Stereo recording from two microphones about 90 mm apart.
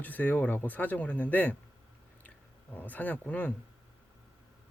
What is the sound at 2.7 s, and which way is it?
Speech, 20° left (ahead or behind).